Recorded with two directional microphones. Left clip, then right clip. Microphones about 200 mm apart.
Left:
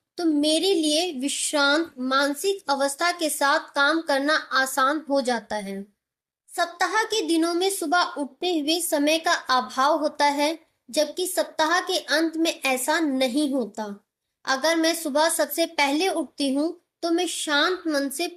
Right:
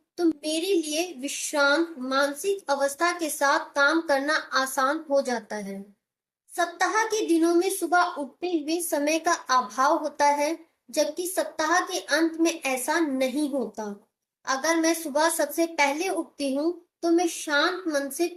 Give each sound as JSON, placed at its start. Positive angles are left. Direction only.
{"t": 0.2, "sound": "a woman's voice", "side_deg": 40}